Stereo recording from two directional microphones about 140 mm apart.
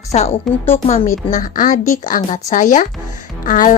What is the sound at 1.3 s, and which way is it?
Speech, 70° left (ahead or behind).